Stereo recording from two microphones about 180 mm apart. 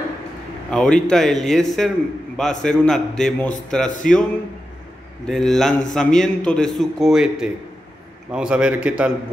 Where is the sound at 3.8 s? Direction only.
45° left (ahead or behind).